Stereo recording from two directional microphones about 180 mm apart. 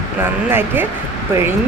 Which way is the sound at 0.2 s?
10° right (ahead or behind).